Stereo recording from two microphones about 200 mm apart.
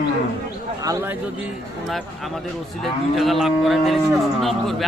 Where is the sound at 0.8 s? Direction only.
20° right (ahead or behind).